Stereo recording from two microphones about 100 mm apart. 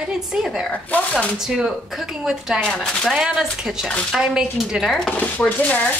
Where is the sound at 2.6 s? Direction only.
10° left (ahead or behind).